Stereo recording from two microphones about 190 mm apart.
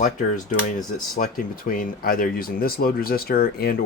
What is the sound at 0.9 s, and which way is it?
Speech, 50° left (ahead or behind).